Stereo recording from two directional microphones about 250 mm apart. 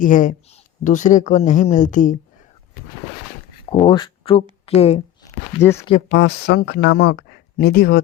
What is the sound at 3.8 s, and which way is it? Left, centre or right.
Speech, centre.